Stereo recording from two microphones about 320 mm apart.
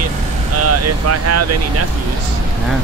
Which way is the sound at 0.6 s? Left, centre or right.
Right.